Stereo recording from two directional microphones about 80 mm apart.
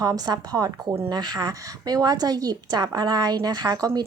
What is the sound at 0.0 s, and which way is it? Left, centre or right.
A woman's voice, right.